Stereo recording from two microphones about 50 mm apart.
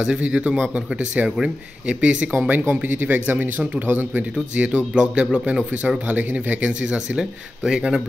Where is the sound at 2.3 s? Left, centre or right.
Right.